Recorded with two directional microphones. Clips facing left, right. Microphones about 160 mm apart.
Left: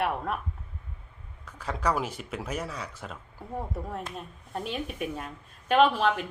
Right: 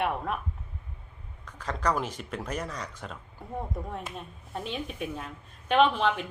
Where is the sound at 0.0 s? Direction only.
5° left (ahead or behind).